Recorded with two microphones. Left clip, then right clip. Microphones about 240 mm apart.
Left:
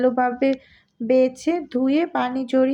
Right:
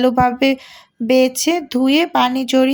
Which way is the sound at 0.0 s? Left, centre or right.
Right.